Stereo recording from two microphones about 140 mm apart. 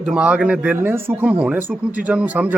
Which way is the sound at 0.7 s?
15° right (ahead or behind).